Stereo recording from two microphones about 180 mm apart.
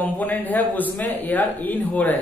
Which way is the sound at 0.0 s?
10° left (ahead or behind).